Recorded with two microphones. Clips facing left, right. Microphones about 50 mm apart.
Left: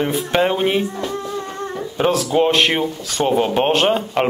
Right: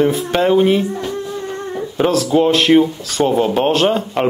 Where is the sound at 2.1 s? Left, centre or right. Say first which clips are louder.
Right 1 dB; centre.